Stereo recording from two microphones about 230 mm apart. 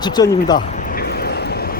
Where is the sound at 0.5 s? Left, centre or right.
Left.